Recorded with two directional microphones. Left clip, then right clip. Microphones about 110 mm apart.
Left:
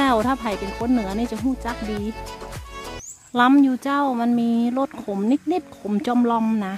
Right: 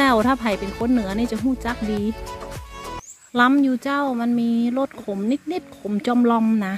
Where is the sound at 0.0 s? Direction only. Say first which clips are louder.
Right 2 dB; centre (ahead or behind).